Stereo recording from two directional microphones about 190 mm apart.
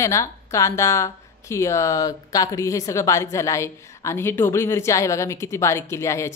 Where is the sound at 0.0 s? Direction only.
15° left (ahead or behind).